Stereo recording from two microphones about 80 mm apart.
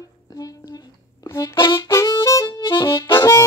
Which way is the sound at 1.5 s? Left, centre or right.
Left.